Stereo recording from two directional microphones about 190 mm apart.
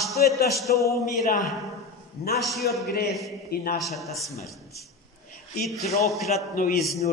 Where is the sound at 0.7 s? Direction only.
15° left (ahead or behind).